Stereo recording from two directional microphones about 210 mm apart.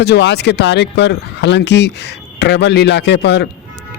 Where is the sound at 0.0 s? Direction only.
55° left (ahead or behind).